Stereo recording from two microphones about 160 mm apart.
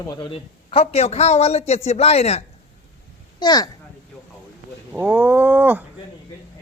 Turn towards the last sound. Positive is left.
turn(degrees=-10)  # may be behind; listen again after turning